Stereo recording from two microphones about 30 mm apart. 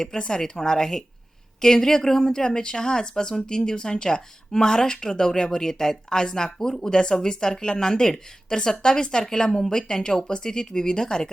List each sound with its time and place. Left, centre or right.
0.2 s a woman's voice: left